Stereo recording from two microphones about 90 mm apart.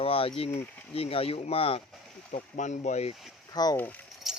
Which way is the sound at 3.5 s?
50° left (ahead or behind).